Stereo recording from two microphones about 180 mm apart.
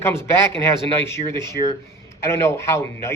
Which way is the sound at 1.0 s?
15° left (ahead or behind).